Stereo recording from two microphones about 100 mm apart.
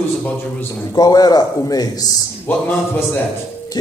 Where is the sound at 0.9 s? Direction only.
40° left (ahead or behind).